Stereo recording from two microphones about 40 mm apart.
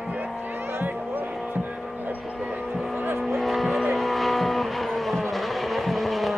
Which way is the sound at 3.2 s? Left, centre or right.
Centre.